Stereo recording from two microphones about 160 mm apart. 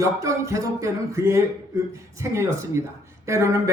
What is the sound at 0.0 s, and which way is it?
Speech, 20° right (ahead or behind).